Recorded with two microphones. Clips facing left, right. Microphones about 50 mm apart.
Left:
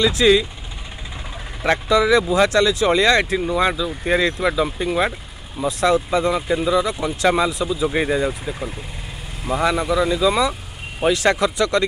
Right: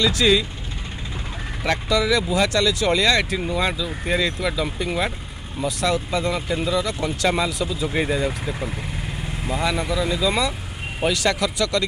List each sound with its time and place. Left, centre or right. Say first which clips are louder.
0.0 s speech: left 3 dB; left
1.6 s speech: left 4 dB; centre
3.3 s speech: left 4 dB; centre
9.5 s speech: left 5 dB; left